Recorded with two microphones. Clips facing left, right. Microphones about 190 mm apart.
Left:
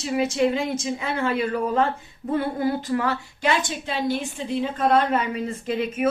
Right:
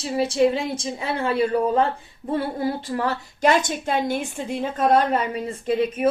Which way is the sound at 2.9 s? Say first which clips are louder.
Left 1 dB; 35° right (ahead or behind).